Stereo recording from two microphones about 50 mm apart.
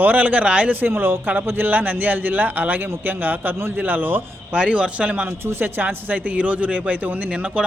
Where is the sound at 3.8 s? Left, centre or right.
Right.